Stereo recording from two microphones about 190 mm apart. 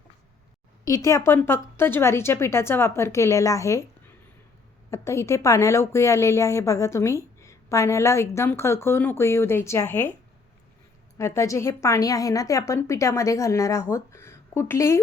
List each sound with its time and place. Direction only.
0.9 s a woman's voice: 15° left (ahead or behind)
4.9 s a woman's voice: 15° left (ahead or behind)
11.2 s a woman's voice: 15° left (ahead or behind)